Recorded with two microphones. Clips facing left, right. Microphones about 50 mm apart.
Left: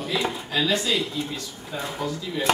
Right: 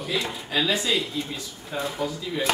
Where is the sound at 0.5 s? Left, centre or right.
Centre.